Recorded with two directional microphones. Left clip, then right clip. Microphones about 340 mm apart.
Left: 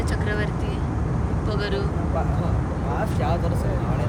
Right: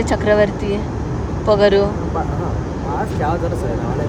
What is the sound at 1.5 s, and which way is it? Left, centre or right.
Speech, centre.